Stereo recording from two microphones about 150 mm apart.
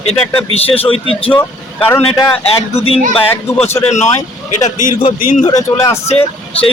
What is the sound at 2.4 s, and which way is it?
Speech, 45° left (ahead or behind).